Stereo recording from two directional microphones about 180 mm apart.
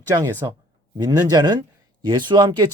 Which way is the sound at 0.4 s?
20° right (ahead or behind).